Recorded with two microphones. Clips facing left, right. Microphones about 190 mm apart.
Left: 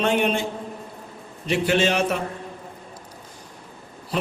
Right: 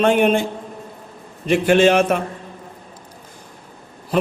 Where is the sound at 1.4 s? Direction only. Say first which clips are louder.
Right 7 dB; 50° right (ahead or behind).